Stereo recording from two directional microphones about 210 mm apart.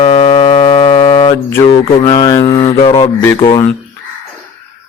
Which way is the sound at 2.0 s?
20° left (ahead or behind).